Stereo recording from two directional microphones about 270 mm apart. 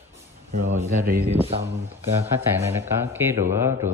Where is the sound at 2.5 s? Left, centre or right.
Centre.